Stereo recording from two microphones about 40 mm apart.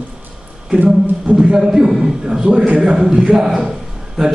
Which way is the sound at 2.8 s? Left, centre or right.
Centre.